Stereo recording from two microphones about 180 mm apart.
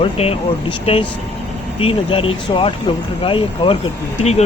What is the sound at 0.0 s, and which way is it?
Speech, 35° left (ahead or behind).